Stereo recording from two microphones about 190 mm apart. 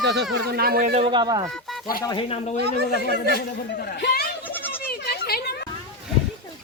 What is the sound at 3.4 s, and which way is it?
Speech, 55° left (ahead or behind).